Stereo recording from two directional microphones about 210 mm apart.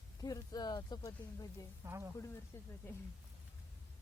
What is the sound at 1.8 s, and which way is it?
Speech, 15° right (ahead or behind).